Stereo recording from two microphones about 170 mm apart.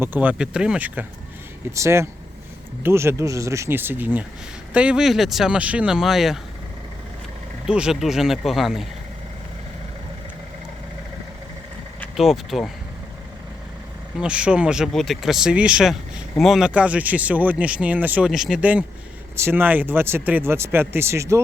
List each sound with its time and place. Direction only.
0.0 s speech: 10° right (ahead or behind)
7.7 s speech: 5° right (ahead or behind)
12.1 s speech: centre (ahead or behind)
14.2 s speech: 5° right (ahead or behind)